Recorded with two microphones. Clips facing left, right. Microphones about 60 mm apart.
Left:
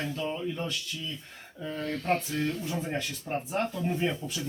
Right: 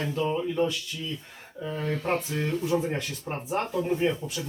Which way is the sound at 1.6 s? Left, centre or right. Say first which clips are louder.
Right 3 dB; centre.